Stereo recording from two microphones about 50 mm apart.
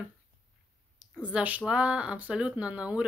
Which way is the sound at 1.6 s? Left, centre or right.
Right.